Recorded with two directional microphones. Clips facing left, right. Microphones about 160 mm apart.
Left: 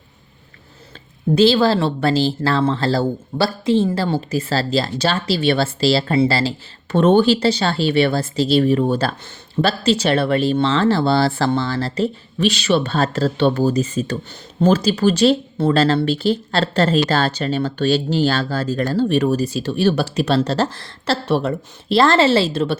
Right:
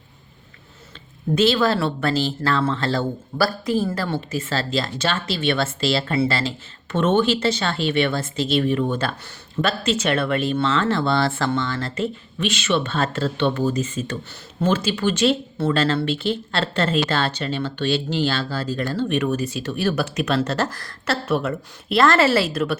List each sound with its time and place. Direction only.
1.4 s speech: 30° left (ahead or behind)